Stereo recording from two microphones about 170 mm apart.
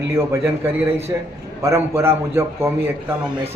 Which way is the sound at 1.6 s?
15° right (ahead or behind).